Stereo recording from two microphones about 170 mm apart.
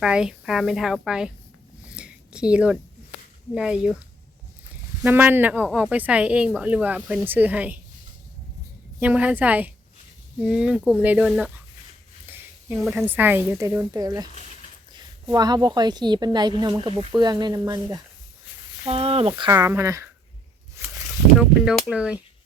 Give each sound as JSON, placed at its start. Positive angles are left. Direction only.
{"t": 0.0, "sound": "speech", "side_deg": -5}
{"t": 2.0, "sound": "a sound", "side_deg": -5}
{"t": 3.5, "sound": "speech", "side_deg": -5}
{"t": 5.0, "sound": "speech", "side_deg": -10}
{"t": 9.0, "sound": "speech", "side_deg": -10}
{"t": 12.3, "sound": "a sound", "side_deg": -10}
{"t": 13.1, "sound": "a woman's voice", "side_deg": -10}
{"t": 18.9, "sound": "speech", "side_deg": -35}
{"t": 19.5, "sound": "speech", "side_deg": -15}
{"t": 20.8, "sound": "a sound", "side_deg": -15}
{"t": 21.3, "sound": "speech", "side_deg": -5}